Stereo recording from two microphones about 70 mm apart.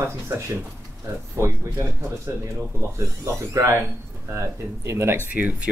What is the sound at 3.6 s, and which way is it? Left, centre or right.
Speech, right.